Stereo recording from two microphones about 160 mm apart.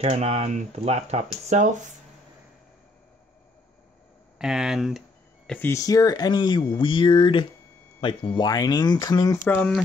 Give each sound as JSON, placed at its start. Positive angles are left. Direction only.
{"t": 0.0, "sound": "speech", "side_deg": -40}
{"t": 4.4, "sound": "speech", "side_deg": -5}
{"t": 5.5, "sound": "speech", "side_deg": 15}